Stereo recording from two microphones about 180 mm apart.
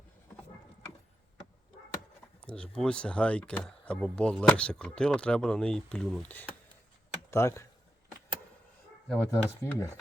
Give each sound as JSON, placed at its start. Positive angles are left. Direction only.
{"t": 2.4, "sound": "speech", "side_deg": 5}
{"t": 9.0, "sound": "speech", "side_deg": 5}